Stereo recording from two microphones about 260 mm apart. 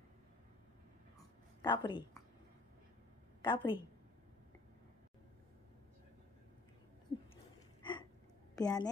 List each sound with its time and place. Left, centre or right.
1.6 s a woman's voice: centre
3.4 s a woman's voice: centre
7.8 s a sound: centre
8.5 s a woman's voice: centre